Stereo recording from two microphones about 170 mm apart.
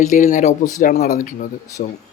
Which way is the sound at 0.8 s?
55° left (ahead or behind).